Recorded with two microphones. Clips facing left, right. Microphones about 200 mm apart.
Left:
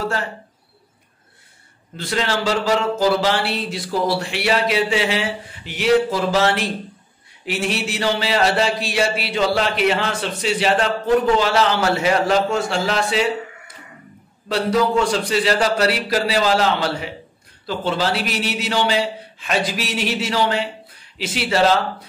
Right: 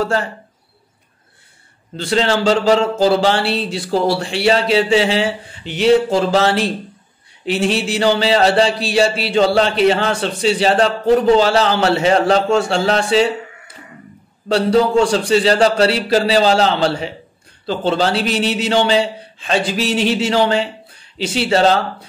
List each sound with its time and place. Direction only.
2.0 s speech: 30° right (ahead or behind)
7.4 s a sound: 30° right (ahead or behind)
14.5 s speech: 30° right (ahead or behind)